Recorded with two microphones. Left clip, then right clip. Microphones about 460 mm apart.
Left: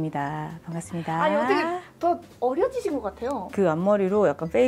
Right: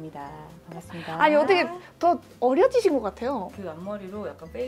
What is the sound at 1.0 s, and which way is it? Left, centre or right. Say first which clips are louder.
Speech: right 3 dB; right.